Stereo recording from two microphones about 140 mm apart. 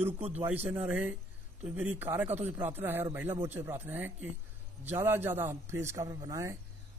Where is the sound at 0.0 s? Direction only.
50° right (ahead or behind).